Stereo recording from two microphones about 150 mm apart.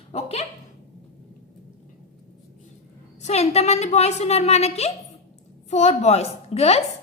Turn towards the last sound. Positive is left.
turn(degrees=45)  # may be behind; listen again after turning